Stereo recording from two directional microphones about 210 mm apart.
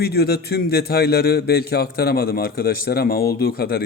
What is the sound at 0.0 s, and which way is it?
A man's voice, 50° left (ahead or behind).